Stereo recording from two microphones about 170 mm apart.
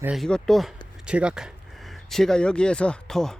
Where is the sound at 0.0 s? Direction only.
Centre (ahead or behind).